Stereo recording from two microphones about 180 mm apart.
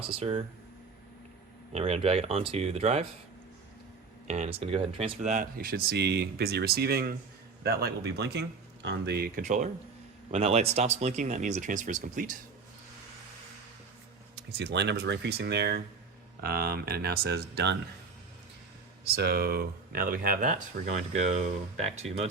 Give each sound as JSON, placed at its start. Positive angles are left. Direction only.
{"t": 0.1, "sound": "speech", "side_deg": -35}
{"t": 1.7, "sound": "speech", "side_deg": -35}
{"t": 4.3, "sound": "speech", "side_deg": -35}
{"t": 5.2, "sound": "speech", "side_deg": -45}
{"t": 14.3, "sound": "speech", "side_deg": -70}
{"t": 16.4, "sound": "speech", "side_deg": -60}
{"t": 19.0, "sound": "speech", "side_deg": -60}